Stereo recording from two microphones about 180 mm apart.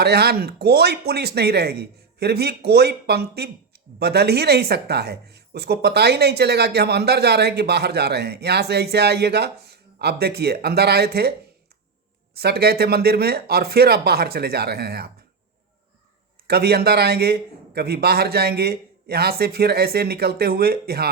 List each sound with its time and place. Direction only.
0.0 s speech: 65° right (ahead or behind)
12.4 s speech: 60° right (ahead or behind)
16.5 s speech: 60° right (ahead or behind)